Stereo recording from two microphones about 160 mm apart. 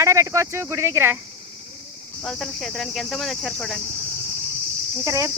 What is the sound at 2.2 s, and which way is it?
Cricket, centre (ahead or behind).